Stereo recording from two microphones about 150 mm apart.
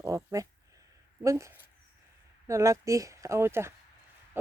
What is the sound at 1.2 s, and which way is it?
Speech, 20° right (ahead or behind).